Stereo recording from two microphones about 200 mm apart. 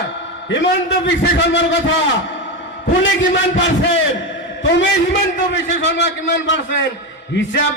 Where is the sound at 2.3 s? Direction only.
70° left (ahead or behind).